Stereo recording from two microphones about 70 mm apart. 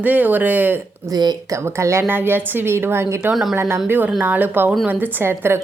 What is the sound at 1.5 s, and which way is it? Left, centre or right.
Speech, right.